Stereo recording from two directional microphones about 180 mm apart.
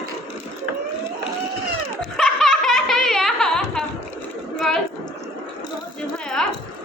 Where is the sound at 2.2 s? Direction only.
Centre (ahead or behind).